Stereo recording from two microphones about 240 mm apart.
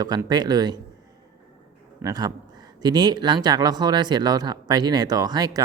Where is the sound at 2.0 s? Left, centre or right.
Centre.